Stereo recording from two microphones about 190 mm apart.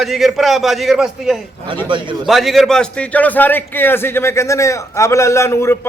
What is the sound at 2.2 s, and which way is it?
A man's voice, centre (ahead or behind).